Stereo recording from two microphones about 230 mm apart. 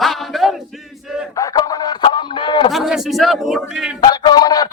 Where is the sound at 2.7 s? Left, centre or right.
Centre.